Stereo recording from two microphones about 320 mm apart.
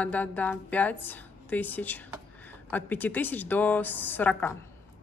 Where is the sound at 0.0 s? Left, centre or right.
Centre.